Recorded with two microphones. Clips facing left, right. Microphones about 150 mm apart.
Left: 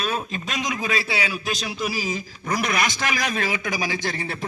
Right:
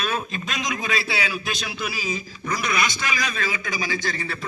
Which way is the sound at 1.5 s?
35° left (ahead or behind).